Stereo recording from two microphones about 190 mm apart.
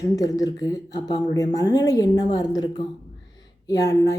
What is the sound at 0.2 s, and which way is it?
Speech, 20° left (ahead or behind).